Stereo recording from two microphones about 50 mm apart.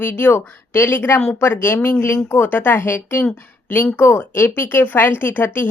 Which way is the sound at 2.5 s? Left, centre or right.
Left.